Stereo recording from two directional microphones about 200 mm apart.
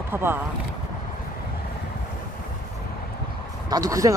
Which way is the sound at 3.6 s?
20° right (ahead or behind).